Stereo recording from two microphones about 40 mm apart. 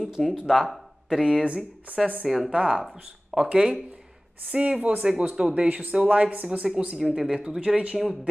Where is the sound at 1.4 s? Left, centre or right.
Right.